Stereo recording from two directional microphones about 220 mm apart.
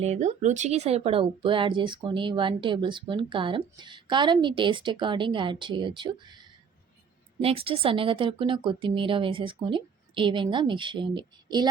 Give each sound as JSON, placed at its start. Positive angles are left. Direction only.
{"t": 0.0, "sound": "speech", "side_deg": -30}
{"t": 7.4, "sound": "speech", "side_deg": -25}